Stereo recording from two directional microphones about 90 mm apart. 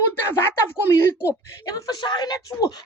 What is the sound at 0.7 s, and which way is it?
Speech, 30° left (ahead or behind).